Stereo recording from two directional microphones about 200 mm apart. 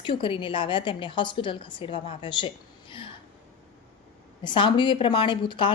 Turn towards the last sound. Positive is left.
turn(degrees=25)  # may be behind; listen again after turning